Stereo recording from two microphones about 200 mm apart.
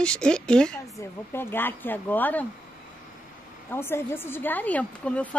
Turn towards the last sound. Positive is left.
turn(degrees=5)  # may be behind; listen again after turning